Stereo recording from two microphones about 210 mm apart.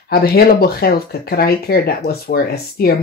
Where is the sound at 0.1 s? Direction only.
45° left (ahead or behind).